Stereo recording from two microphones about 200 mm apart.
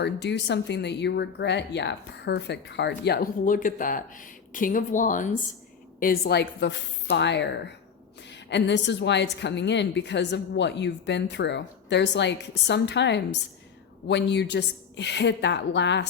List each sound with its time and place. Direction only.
0.0 s speech: 60° left (ahead or behind)